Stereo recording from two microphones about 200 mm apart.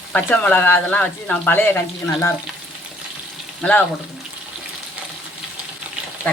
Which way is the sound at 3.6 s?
5° left (ahead or behind).